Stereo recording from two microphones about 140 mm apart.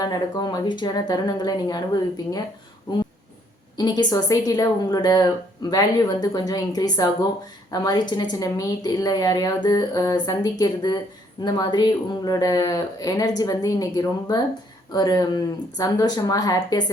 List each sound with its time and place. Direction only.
0.0 s a woman's voice: 30° left (ahead or behind)
3.8 s a woman's voice: 30° left (ahead or behind)